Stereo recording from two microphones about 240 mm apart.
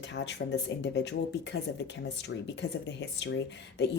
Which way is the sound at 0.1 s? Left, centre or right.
Left.